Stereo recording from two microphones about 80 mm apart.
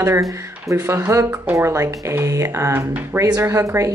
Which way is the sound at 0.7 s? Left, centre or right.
Right.